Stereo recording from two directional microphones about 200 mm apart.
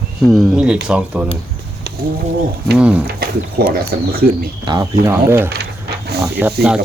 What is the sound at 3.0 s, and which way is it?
Speech, 50° right (ahead or behind).